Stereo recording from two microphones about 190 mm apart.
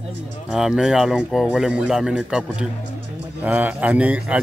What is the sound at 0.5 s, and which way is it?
Speech, centre (ahead or behind).